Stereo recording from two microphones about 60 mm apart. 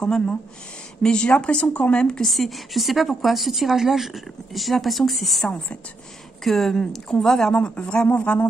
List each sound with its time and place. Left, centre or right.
0.0 s speech: centre
2.2 s a woman's voice: centre; by 8.5 s left